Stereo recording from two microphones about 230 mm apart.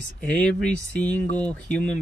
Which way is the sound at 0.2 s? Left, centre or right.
Centre.